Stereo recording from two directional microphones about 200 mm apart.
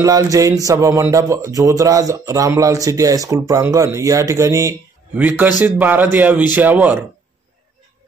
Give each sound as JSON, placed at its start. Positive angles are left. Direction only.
{"t": 0.0, "sound": "speech", "side_deg": -15}